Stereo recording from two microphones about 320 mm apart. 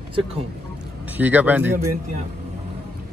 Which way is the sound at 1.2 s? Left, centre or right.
Centre.